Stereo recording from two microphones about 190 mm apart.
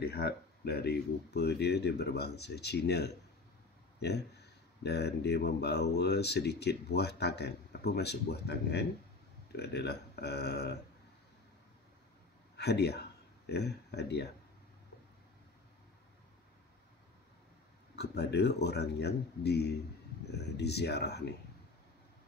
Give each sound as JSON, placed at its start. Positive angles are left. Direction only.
{"t": 0.0, "sound": "speech", "side_deg": 55}
{"t": 12.5, "sound": "speech", "side_deg": 60}
{"t": 17.9, "sound": "speech", "side_deg": 60}